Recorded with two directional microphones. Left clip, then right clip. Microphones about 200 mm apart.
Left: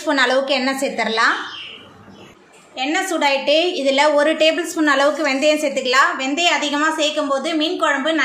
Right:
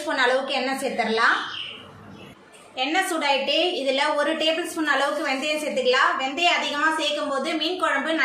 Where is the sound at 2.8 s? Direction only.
30° left (ahead or behind).